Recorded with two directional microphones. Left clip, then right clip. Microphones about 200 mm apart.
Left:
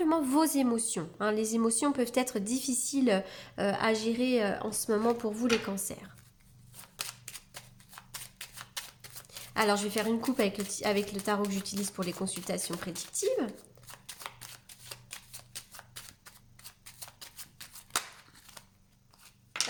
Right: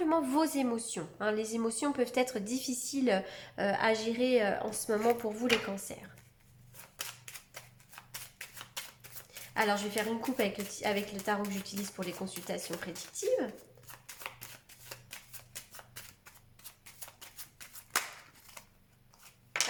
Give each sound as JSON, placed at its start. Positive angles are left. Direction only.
{"t": 0.0, "sound": "a woman's voice", "side_deg": 35}
{"t": 6.9, "sound": "a sound", "side_deg": 20}
{"t": 9.6, "sound": "a woman's voice", "side_deg": 45}
{"t": 11.7, "sound": "speech", "side_deg": 25}
{"t": 11.9, "sound": "a woman's voice", "side_deg": 45}
{"t": 14.8, "sound": "shuffling cards", "side_deg": 20}
{"t": 17.0, "sound": "a sound", "side_deg": 20}